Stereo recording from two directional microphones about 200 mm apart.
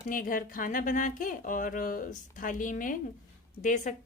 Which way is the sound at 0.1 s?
45° left (ahead or behind).